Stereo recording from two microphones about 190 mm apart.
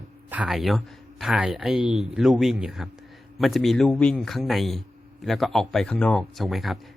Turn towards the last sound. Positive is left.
turn(degrees=0)  # may be behind; listen again after turning